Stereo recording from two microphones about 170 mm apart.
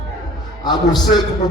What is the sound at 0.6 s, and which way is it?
Music, 25° left (ahead or behind).